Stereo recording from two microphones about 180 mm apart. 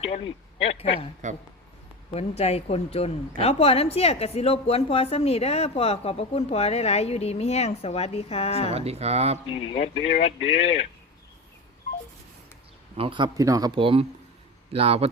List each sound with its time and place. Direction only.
0.0 s speech: 35° left (ahead or behind)
1.2 s speech: 45° right (ahead or behind)
2.1 s speech: 35° left (ahead or behind)
8.7 s speech: 35° right (ahead or behind)
9.5 s speech: 30° left (ahead or behind)
13.0 s speech: 30° right (ahead or behind)